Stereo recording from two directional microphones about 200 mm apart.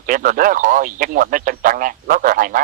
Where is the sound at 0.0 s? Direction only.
40° right (ahead or behind).